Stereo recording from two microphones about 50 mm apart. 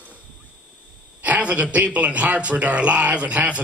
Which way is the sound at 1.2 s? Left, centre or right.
Right.